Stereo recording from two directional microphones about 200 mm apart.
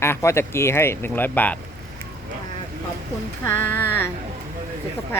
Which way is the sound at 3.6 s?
10° left (ahead or behind).